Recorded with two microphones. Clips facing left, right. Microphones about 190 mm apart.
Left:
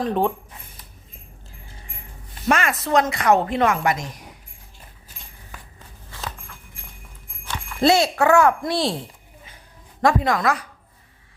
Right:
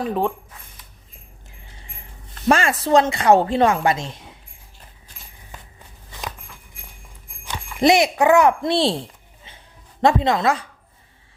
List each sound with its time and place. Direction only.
0.0 s speech: centre (ahead or behind)
2.5 s a woman's voice: 30° right (ahead or behind)
6.1 s walk: 15° right (ahead or behind)
7.4 s a child's voice: 15° right (ahead or behind)
10.0 s a woman's voice: 25° right (ahead or behind)